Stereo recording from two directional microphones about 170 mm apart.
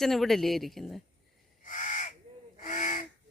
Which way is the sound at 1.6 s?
50° left (ahead or behind).